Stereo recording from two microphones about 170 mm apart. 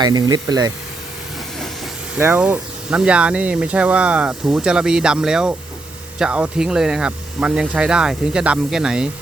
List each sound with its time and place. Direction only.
0.0 s speech: 25° right (ahead or behind)
2.1 s speech: 10° right (ahead or behind)